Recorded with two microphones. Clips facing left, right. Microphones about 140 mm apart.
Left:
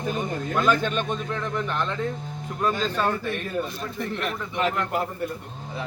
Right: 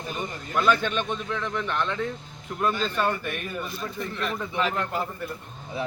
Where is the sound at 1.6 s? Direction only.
5° left (ahead or behind).